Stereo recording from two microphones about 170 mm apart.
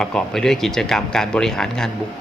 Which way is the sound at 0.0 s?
5° left (ahead or behind).